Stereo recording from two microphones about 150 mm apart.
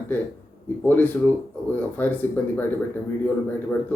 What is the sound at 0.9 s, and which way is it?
Speech, 10° left (ahead or behind).